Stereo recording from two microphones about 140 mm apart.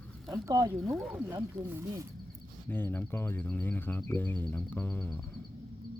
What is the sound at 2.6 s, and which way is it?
Speech, 15° left (ahead or behind).